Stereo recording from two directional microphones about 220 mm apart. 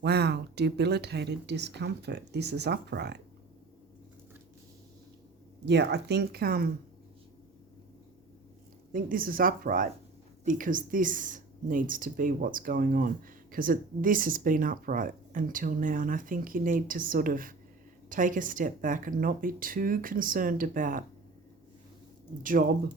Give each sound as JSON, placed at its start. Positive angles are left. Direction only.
{"t": 0.0, "sound": "speech", "side_deg": -50}
{"t": 5.6, "sound": "speech", "side_deg": -50}
{"t": 8.9, "sound": "speech", "side_deg": -40}